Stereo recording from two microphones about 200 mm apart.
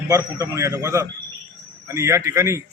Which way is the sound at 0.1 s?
15° right (ahead or behind).